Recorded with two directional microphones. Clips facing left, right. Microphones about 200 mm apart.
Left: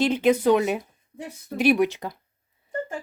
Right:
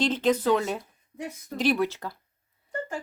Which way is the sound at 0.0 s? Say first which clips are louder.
Left 4 dB; 10° left (ahead or behind).